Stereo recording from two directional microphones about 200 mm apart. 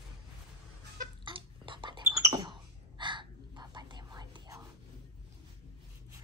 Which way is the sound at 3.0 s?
25° right (ahead or behind).